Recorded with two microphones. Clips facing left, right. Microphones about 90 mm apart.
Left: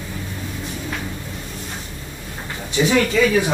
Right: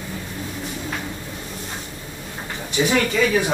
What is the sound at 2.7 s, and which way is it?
Speech, 15° right (ahead or behind).